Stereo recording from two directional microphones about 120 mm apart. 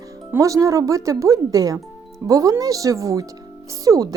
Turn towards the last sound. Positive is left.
turn(degrees=-30)  # may be behind; listen again after turning